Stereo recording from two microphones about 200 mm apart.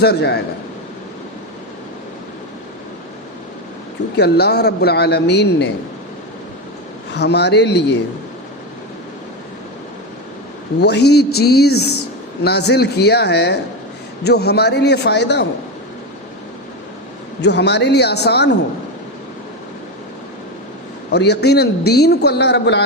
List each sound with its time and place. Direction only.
0.0 s a man's voice: 55° left (ahead or behind)
4.2 s a man's voice: 55° left (ahead or behind)
7.1 s a man's voice: 55° left (ahead or behind)
10.8 s a man's voice: 55° left (ahead or behind)
17.4 s a man's voice: 60° left (ahead or behind)
21.1 s a man's voice: 55° left (ahead or behind)